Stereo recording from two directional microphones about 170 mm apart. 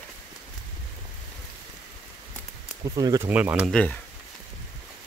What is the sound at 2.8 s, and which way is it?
Speech, 20° right (ahead or behind).